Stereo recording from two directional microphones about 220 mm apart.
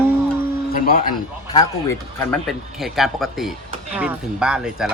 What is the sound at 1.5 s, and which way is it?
Speech, 15° left (ahead or behind).